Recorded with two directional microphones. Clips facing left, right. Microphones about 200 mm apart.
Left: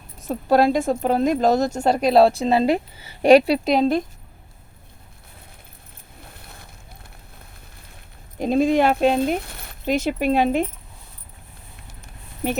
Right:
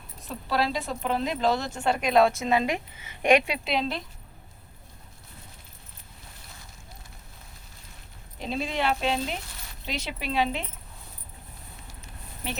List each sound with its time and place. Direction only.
0.2 s speech: 45° left (ahead or behind)
6.4 s boat: 60° left (ahead or behind)
8.4 s speech: 50° left (ahead or behind)